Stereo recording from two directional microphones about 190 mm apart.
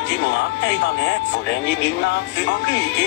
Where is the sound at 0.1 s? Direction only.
70° left (ahead or behind).